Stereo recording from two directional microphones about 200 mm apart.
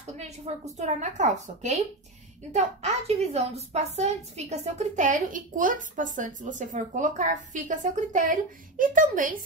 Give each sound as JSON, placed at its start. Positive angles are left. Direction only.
{"t": 0.7, "sound": "a woman's voice", "side_deg": -35}